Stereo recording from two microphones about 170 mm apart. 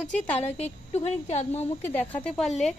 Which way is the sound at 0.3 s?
35° left (ahead or behind).